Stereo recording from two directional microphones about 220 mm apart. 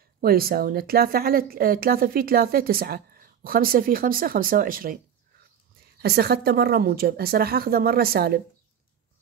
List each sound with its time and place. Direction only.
0.2 s a woman's voice: 45° right (ahead or behind)
5.9 s a woman's voice: 45° right (ahead or behind)